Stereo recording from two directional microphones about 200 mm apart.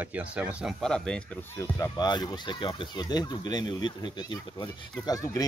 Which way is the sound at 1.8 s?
20° left (ahead or behind).